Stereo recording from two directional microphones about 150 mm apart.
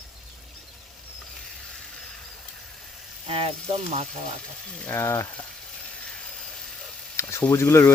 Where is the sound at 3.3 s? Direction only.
40° right (ahead or behind).